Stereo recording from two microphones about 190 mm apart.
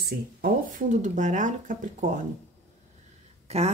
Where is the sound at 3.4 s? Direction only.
35° right (ahead or behind).